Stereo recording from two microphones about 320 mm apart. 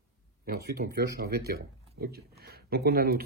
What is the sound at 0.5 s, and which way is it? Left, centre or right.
Speech, right.